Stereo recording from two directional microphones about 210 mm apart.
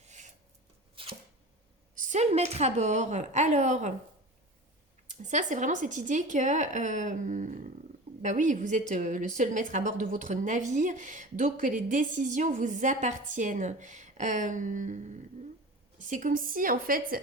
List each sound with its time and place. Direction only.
0.0 s a sound: 35° right (ahead or behind)
1.0 s chopping: 25° right (ahead or behind)
2.0 s a woman's voice: 35° right (ahead or behind)
5.0 s a woman's voice: 35° right (ahead or behind)